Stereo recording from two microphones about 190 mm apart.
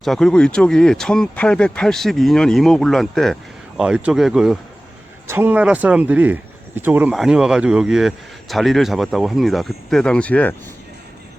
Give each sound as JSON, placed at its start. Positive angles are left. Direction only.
{"t": 0.0, "sound": "speech", "side_deg": 0}